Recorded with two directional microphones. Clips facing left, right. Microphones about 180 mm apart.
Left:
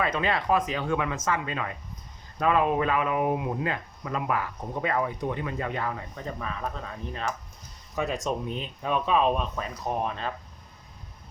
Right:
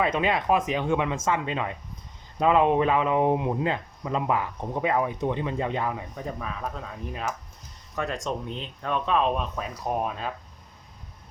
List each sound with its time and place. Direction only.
0.0 s speech: 20° right (ahead or behind)